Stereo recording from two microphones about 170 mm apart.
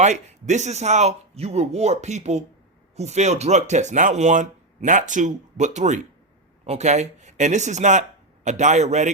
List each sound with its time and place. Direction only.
0.0 s speech: 40° right (ahead or behind)